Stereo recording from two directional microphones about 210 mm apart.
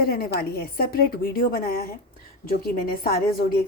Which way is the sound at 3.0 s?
45° left (ahead or behind).